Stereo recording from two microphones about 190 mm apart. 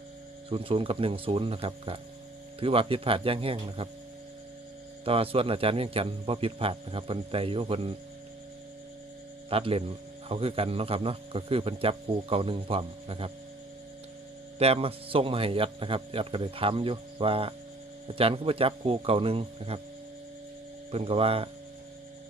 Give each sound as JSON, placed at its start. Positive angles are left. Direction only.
{"t": 0.5, "sound": "speech", "side_deg": -30}
{"t": 5.0, "sound": "speech", "side_deg": -30}
{"t": 9.5, "sound": "speech", "side_deg": -30}
{"t": 14.6, "sound": "speech", "side_deg": -30}
{"t": 20.9, "sound": "speech", "side_deg": -30}